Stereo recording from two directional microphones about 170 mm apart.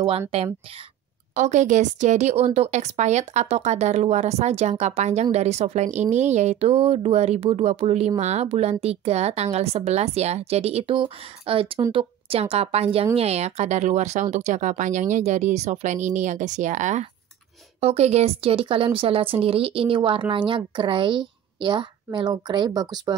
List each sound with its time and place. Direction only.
0.3 s a woman's voice: 35° right (ahead or behind)